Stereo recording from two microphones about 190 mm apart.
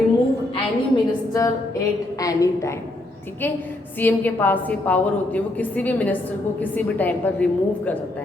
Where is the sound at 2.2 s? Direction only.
15° left (ahead or behind).